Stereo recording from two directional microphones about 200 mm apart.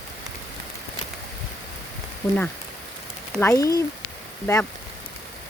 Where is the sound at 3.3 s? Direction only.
10° left (ahead or behind).